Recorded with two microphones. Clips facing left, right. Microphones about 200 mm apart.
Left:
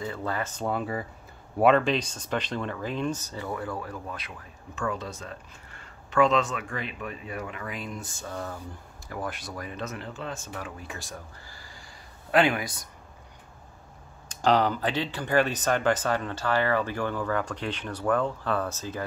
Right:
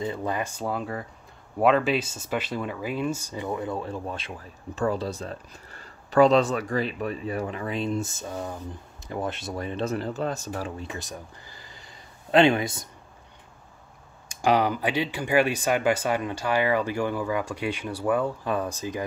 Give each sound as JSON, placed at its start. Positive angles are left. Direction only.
{"t": 0.0, "sound": "speech", "side_deg": -20}
{"t": 14.3, "sound": "speech", "side_deg": -10}